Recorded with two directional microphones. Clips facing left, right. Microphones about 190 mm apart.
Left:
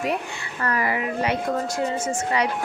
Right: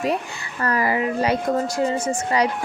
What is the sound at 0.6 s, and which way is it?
Speech, 35° right (ahead or behind).